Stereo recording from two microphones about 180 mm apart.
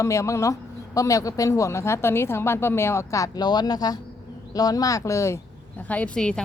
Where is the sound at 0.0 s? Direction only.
15° left (ahead or behind).